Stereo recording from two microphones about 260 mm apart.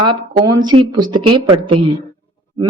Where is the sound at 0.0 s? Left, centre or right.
Centre.